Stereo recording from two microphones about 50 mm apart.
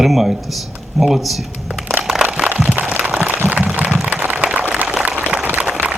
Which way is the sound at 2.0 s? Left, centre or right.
Centre.